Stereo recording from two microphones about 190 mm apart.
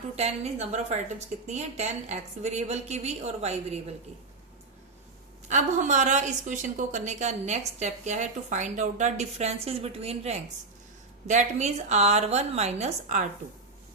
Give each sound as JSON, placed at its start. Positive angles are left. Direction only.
{"t": 0.2, "sound": "a woman's voice", "side_deg": -35}
{"t": 5.5, "sound": "a woman's voice", "side_deg": -40}